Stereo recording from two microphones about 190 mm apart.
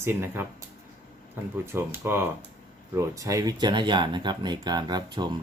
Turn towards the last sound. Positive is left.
turn(degrees=-25)  # may be behind; listen again after turning